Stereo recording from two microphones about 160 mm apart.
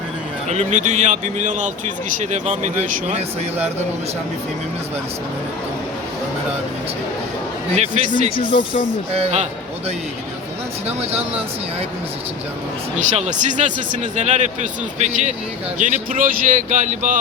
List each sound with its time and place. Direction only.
0.4 s a man's voice: 45° right (ahead or behind)
7.7 s speech: 40° right (ahead or behind)
8.4 s speech: 30° left (ahead or behind)
8.9 s a man's voice: 40° right (ahead or behind)
10.8 s speech: 40° right (ahead or behind)
13.0 s a man's voice: 45° right (ahead or behind)